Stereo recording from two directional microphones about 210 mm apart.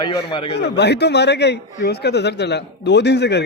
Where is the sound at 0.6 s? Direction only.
55° left (ahead or behind).